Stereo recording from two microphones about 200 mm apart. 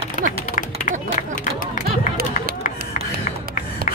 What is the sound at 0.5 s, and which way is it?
Music, 40° left (ahead or behind).